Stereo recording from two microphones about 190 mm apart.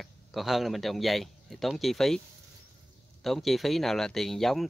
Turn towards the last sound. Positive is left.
turn(degrees=0)  # may be behind; listen again after turning